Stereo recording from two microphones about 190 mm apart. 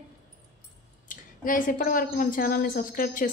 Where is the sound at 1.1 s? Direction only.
45° left (ahead or behind).